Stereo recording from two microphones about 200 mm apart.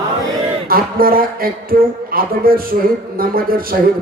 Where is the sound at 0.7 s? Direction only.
45° right (ahead or behind).